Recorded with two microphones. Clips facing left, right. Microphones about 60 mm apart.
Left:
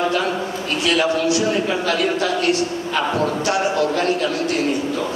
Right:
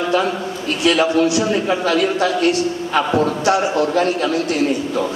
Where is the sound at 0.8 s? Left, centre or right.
Right.